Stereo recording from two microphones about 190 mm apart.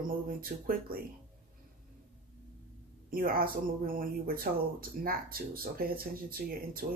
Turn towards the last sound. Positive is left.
turn(degrees=-50)  # may be behind; listen again after turning